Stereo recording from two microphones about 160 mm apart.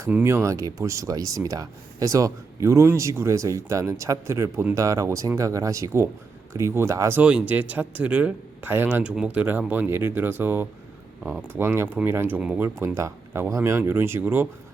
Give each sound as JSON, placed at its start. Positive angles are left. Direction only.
{"t": 0.1, "sound": "speech", "side_deg": -15}